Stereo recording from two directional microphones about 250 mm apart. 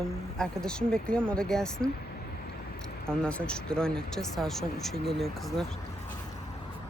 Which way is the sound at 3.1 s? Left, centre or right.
Centre.